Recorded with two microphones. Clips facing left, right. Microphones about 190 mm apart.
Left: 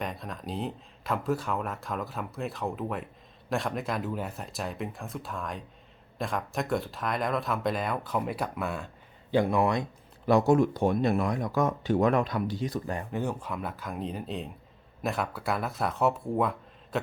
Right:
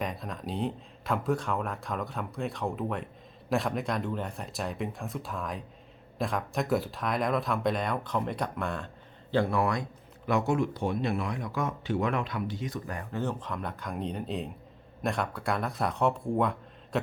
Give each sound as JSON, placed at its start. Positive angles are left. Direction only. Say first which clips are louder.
{"t": 0.0, "sound": "speech", "louder": "right 1 dB", "side_deg": 0}
{"t": 10.2, "sound": "speech", "louder": "left 5 dB", "side_deg": 35}
{"t": 13.1, "sound": "speech", "louder": "right 1 dB", "side_deg": 10}